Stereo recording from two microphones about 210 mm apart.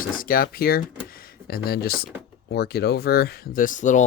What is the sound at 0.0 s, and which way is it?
Speech, 40° left (ahead or behind).